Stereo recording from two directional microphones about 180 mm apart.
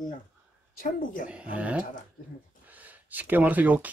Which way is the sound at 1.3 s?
5° right (ahead or behind).